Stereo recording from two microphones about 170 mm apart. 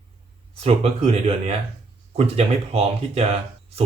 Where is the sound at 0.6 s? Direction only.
40° right (ahead or behind).